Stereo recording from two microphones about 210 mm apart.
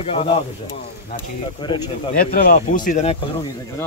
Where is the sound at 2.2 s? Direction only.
45° left (ahead or behind).